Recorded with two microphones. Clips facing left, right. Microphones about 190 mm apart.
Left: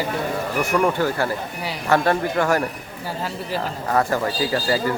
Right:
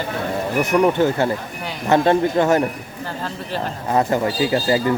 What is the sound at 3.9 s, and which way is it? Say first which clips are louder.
Speech: right 3 dB; 20° right (ahead or behind).